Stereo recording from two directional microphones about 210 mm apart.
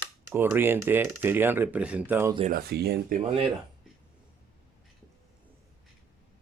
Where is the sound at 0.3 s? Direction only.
10° right (ahead or behind).